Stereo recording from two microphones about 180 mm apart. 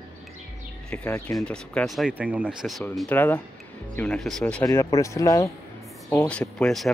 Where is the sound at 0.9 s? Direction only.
10° left (ahead or behind).